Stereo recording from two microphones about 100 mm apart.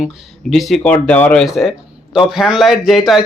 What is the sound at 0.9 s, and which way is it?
Speech, 15° left (ahead or behind).